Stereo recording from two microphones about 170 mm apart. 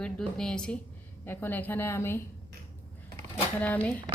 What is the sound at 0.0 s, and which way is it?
A woman's voice, 5° left (ahead or behind).